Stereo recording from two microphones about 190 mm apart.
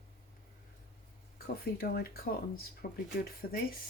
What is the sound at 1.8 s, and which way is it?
Speech, 50° left (ahead or behind).